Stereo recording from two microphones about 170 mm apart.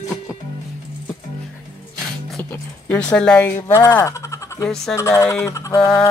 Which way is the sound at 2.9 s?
10° left (ahead or behind).